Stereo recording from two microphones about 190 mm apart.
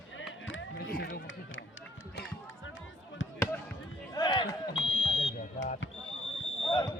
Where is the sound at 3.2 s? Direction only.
85° left.